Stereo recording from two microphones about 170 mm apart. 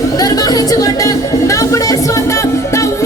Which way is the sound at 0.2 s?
20° left (ahead or behind).